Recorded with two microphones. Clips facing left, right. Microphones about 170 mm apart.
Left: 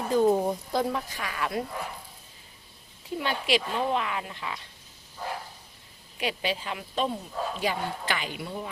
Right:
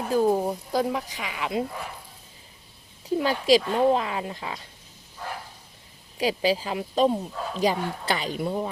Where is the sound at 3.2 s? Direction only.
40° right (ahead or behind).